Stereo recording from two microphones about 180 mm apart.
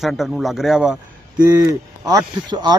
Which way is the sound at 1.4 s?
20° right (ahead or behind).